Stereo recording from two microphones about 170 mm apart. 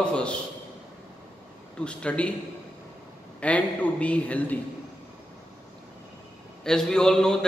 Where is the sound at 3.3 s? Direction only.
10° left (ahead or behind).